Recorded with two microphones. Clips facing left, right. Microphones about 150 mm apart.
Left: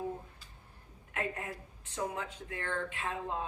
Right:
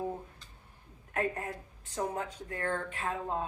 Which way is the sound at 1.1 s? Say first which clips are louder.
Right 4 dB; 35° right (ahead or behind).